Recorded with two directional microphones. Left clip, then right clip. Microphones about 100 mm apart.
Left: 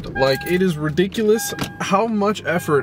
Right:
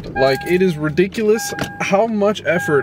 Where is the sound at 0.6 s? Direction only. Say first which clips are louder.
Right 3 dB; centre (ahead or behind).